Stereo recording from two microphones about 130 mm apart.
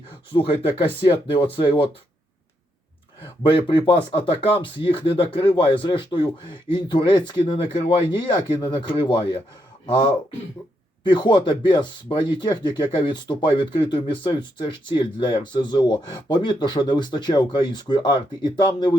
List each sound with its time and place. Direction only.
0.3 s speech: 45° left (ahead or behind)
3.4 s speech: 40° left (ahead or behind)